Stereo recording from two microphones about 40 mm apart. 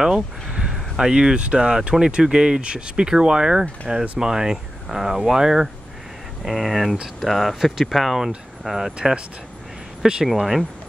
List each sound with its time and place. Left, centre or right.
0.0 s a sound: right
1.0 s speech: right; by 8.2 s centre
8.6 s speech: centre
10.2 s speech: centre